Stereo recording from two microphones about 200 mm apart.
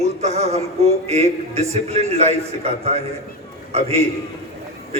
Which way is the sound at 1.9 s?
30° right (ahead or behind).